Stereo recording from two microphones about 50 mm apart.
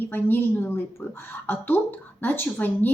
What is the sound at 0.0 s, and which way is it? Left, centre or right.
A woman's voice, left.